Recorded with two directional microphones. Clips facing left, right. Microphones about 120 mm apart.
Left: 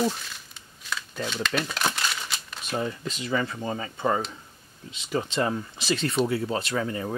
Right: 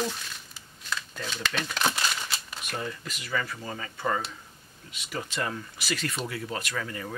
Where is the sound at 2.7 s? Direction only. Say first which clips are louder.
Left 6 dB; 25° left (ahead or behind).